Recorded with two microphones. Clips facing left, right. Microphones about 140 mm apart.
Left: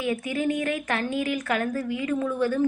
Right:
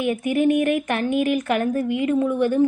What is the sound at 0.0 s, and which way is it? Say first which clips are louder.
A woman's voice: right 6 dB; 20° right (ahead or behind).